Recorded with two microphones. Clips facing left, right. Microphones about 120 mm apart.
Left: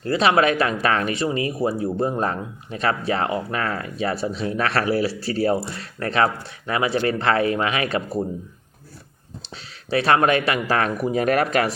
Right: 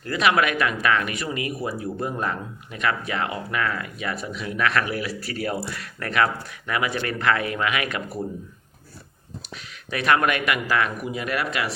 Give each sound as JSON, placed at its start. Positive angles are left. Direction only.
{"t": 0.0, "sound": "speech", "side_deg": 30}
{"t": 9.4, "sound": "speech", "side_deg": 30}